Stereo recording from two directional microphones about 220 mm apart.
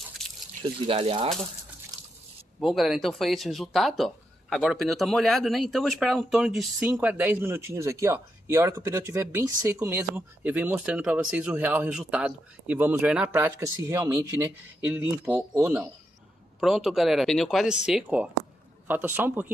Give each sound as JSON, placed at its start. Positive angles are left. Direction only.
{"t": 0.2, "sound": "drip", "side_deg": 0}
{"t": 0.6, "sound": "speech", "side_deg": -25}
{"t": 2.6, "sound": "speech", "side_deg": 0}
{"t": 16.5, "sound": "speech", "side_deg": 0}